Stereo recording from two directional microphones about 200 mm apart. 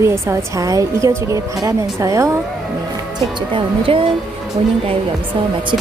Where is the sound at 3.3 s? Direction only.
25° right (ahead or behind).